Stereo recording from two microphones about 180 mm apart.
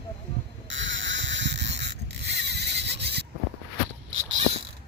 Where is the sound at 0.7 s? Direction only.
90° right; by 3.3 s 65° right (ahead or behind).